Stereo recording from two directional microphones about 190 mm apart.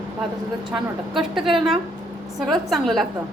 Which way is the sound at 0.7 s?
Centre (ahead or behind).